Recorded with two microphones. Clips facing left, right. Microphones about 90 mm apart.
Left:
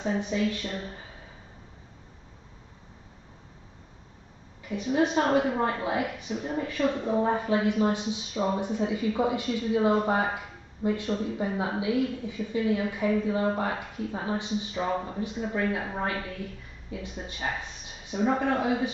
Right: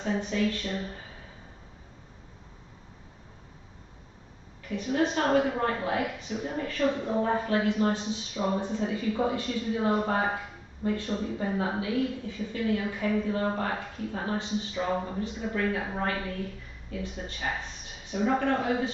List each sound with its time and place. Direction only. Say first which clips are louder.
0.0 s speech: left 1 dB; 15° left (ahead or behind)
4.6 s speech: left 2 dB; 15° left (ahead or behind)